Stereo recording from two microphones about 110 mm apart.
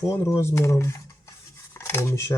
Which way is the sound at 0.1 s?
25° left (ahead or behind).